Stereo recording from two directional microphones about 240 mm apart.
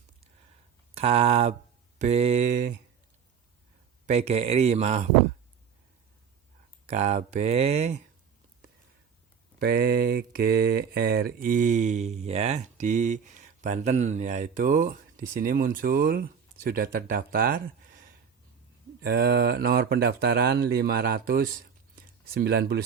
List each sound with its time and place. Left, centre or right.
0.9 s speech: right
4.0 s speech: right
6.8 s speech: right
9.6 s mantra: right
21.9 s a sound: right